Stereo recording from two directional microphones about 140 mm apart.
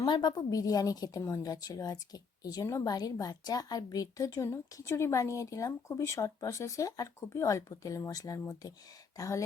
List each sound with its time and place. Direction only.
0.0 s a woman's voice: 30° left (ahead or behind)